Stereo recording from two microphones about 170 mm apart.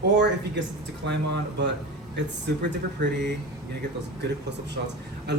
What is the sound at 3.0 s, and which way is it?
Speech, 90° right.